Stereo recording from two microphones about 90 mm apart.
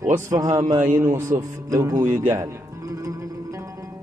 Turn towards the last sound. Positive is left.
turn(degrees=-35)  # may be behind; listen again after turning